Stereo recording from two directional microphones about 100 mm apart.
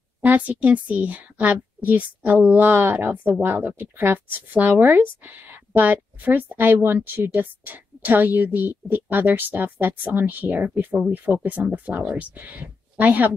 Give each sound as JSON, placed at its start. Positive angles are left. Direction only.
{"t": 0.2, "sound": "a woman's voice", "side_deg": -15}